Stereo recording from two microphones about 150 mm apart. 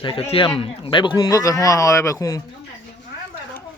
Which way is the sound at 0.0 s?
40° left (ahead or behind).